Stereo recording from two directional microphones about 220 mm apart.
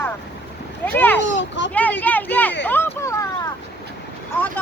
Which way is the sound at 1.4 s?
55° left (ahead or behind).